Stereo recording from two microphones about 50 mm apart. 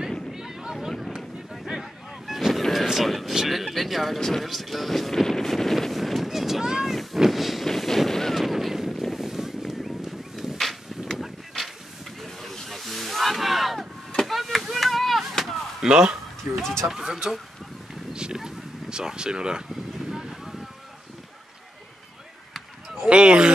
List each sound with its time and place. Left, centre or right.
0.3 s a sound: centre
0.7 s vehicle: centre
7.2 s a sound: centre
12.2 s hiss: centre
14.1 s chop: centre
15.8 s speech: centre
16.5 s vehicle: right
16.8 s speech: centre
18.1 s a sound: centre
22.5 s basketball bounce: centre
23.0 s speech: right